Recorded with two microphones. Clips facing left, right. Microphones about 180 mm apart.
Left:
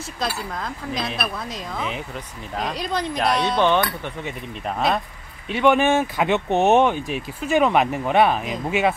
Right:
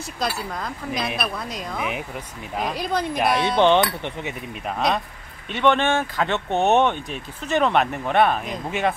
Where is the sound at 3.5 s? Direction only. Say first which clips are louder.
Right 2 dB; 20° right (ahead or behind).